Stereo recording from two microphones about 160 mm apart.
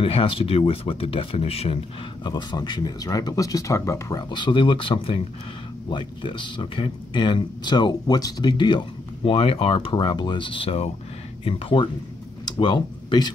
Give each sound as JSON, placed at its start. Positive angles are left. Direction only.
{"t": 0.0, "sound": "speech", "side_deg": 35}
{"t": 2.2, "sound": "speech", "side_deg": 25}